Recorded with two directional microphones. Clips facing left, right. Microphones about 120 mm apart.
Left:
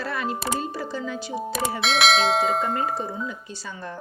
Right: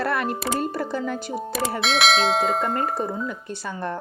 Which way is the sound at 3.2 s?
55° right (ahead or behind).